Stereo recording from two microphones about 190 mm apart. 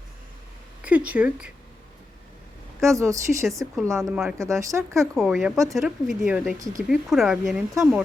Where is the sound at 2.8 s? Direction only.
15° right (ahead or behind).